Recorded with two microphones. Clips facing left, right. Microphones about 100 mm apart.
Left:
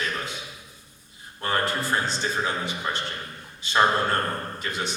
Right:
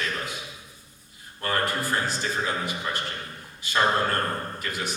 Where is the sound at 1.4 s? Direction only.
25° left (ahead or behind).